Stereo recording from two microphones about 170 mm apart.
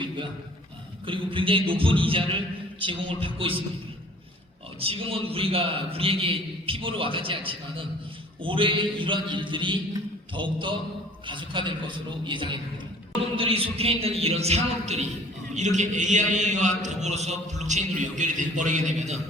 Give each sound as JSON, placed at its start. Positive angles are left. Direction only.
{"t": 1.0, "sound": "a man's voice", "side_deg": -30}
{"t": 4.8, "sound": "a man's voice", "side_deg": -35}